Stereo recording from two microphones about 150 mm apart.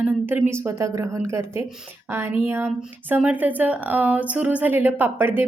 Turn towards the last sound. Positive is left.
turn(degrees=-10)  # may be behind; listen again after turning